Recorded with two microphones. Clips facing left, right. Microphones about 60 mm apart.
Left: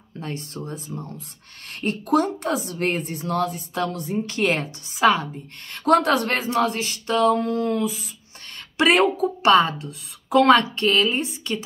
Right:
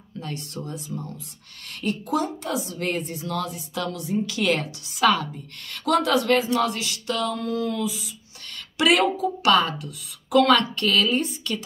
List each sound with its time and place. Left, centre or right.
0.2 s speech: left
1.7 s a woman's voice: left
2.0 s a woman's voice: left
5.9 s a woman's voice: left